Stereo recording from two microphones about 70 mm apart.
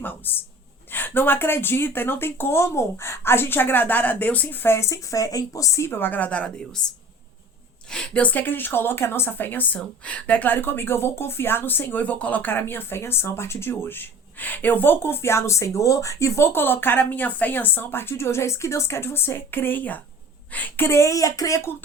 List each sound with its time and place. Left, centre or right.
0.9 s a woman's voice: left
5.9 s a woman's voice: left
7.9 s a woman's voice: centre; by 21.6 s left